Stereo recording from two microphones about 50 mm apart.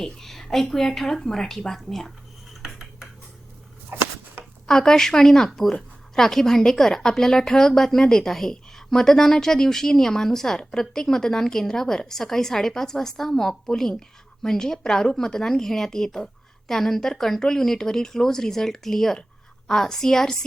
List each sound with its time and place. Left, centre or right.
0.0 s a woman's voice: centre
3.9 s a sound: right
4.6 s a woman's voice: centre